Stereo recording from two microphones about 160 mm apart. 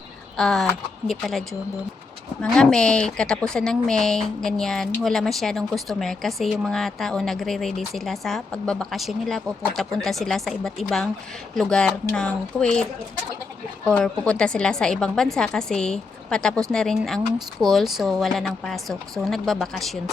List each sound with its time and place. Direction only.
0.3 s a woman's voice: centre (ahead or behind)
13.8 s a woman's voice: 5° left (ahead or behind)